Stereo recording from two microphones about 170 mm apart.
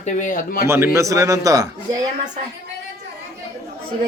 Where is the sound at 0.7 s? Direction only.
15° right (ahead or behind).